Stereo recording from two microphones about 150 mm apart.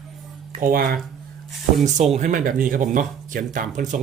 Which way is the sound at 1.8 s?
50° right (ahead or behind).